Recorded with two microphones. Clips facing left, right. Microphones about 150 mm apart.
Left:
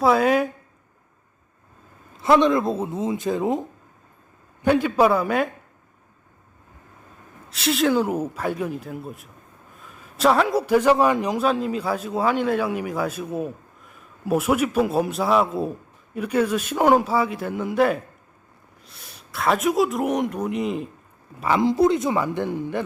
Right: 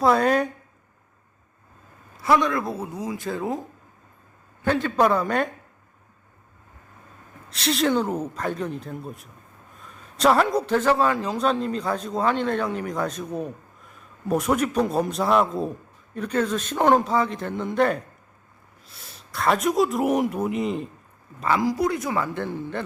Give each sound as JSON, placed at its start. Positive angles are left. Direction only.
{"t": 0.0, "sound": "a man's voice", "side_deg": 5}
{"t": 2.1, "sound": "speech", "side_deg": 20}
{"t": 7.5, "sound": "a man's voice", "side_deg": 0}
{"t": 19.3, "sound": "a man's voice", "side_deg": 0}
{"t": 21.4, "sound": "speech", "side_deg": 20}